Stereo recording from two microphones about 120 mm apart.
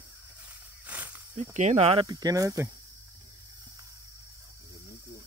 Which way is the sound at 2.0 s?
30° right (ahead or behind).